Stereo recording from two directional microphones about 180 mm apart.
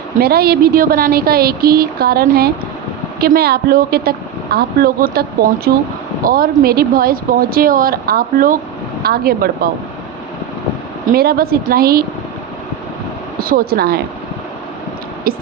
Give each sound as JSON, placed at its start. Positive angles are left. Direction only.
{"t": 0.2, "sound": "a woman's voice", "side_deg": -60}
{"t": 11.1, "sound": "a woman's voice", "side_deg": -60}
{"t": 13.4, "sound": "a woman's voice", "side_deg": -55}